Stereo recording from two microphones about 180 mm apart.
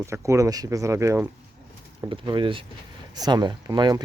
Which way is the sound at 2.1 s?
25° right (ahead or behind).